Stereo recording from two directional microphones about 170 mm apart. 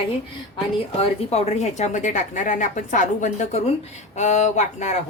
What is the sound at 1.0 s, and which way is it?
A woman's voice, 35° left (ahead or behind).